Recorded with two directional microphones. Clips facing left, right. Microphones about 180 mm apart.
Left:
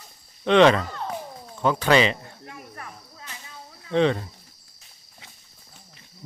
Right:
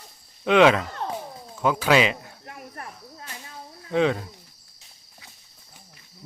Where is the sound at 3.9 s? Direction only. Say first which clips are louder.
Left 1 dB; 5° right (ahead or behind).